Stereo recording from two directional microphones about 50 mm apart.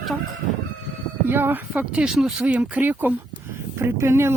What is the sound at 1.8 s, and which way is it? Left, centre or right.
Speech, right.